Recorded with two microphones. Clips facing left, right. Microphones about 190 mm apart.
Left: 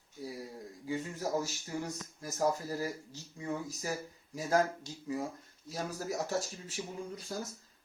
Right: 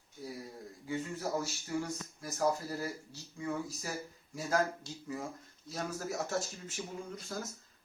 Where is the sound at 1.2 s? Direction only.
15° left (ahead or behind).